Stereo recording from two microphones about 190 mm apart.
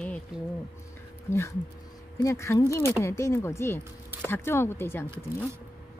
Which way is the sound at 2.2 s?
15° left (ahead or behind).